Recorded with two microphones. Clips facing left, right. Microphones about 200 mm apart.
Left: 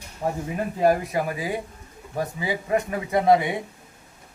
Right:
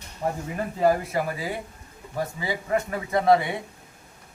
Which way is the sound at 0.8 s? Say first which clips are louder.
Left 1 dB; 15° left (ahead or behind).